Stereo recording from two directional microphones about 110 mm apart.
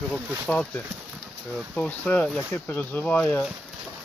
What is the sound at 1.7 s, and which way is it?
Speech, 10° left (ahead or behind).